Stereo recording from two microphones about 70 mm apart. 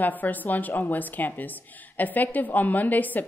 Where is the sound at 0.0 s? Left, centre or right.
Left.